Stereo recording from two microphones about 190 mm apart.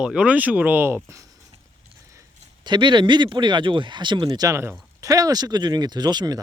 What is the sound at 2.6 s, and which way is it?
Speech, 25° right (ahead or behind).